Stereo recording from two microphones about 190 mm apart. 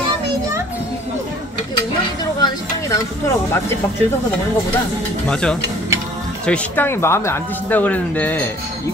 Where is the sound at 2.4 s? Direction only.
20° left (ahead or behind).